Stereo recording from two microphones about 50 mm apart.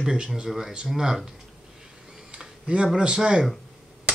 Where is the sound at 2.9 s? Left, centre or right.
Centre.